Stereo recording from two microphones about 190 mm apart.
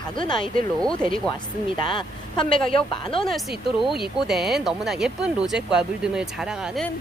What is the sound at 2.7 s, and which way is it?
Speech, 30° left (ahead or behind).